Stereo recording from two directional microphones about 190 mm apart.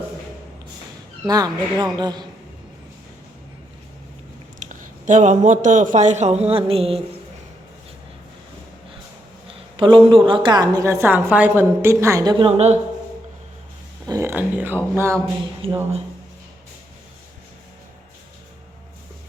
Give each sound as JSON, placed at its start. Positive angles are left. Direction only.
{"t": 1.3, "sound": "a woman's voice", "side_deg": -20}
{"t": 4.6, "sound": "a man's voice", "side_deg": -40}
{"t": 9.5, "sound": "a woman's voice", "side_deg": -25}
{"t": 12.5, "sound": "a man's voice", "side_deg": -35}
{"t": 14.1, "sound": "speech", "side_deg": -15}
{"t": 15.6, "sound": "a woman's voice", "side_deg": -30}